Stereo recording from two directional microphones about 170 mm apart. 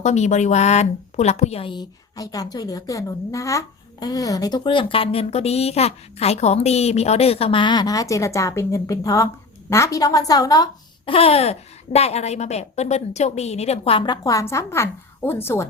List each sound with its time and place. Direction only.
0.0 s a woman's voice: 45° left (ahead or behind); by 15.6 s 15° left (ahead or behind)